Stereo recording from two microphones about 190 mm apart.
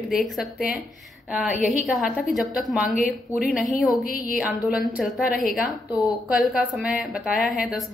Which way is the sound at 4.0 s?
50° left (ahead or behind).